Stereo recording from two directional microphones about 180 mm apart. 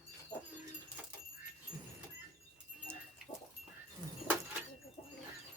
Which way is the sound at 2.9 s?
15° right (ahead or behind).